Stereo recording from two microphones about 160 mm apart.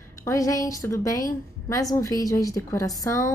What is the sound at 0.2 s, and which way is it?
A woman's voice, 20° left (ahead or behind).